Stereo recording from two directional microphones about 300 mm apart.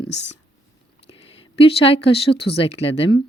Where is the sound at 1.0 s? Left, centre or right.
Centre.